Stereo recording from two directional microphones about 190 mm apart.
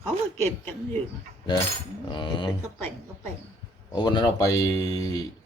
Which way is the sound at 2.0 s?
25° left (ahead or behind).